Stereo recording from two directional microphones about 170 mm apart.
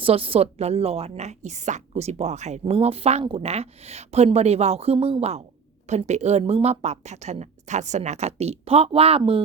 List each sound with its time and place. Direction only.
0.0 s a woman's voice: 35° right (ahead or behind)